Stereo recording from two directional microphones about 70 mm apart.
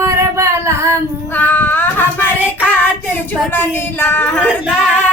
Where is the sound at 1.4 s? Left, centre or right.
Left.